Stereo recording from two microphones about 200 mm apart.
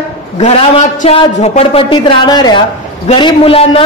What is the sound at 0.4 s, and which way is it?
A man's voice, 35° left (ahead or behind).